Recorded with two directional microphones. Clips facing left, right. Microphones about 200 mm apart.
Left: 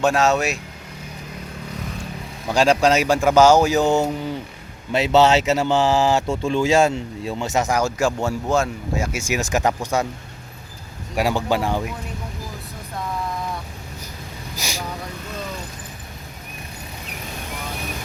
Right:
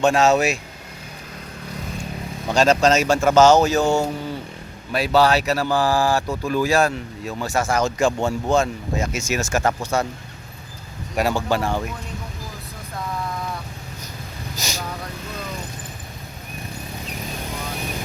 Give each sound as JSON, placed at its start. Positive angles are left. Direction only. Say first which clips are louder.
{"t": 0.0, "sound": "speech", "louder": "right 2 dB", "side_deg": 0}
{"t": 2.5, "sound": "a man's voice", "louder": "even", "side_deg": 10}
{"t": 11.1, "sound": "a man's voice", "louder": "even", "side_deg": 10}
{"t": 14.6, "sound": "vehicle", "louder": "even", "side_deg": 15}